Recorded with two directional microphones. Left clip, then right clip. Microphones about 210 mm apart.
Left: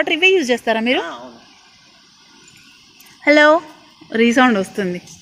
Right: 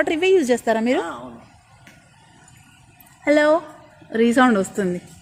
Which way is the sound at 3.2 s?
20° left (ahead or behind).